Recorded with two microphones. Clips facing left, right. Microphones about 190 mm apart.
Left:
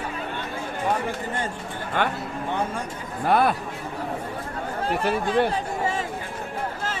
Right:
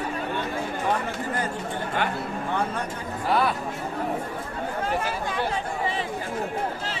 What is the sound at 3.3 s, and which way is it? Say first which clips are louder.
Speech: left 3 dB; 55° left (ahead or behind).